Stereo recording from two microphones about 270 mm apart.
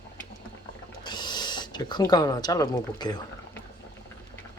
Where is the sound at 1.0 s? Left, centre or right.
Centre.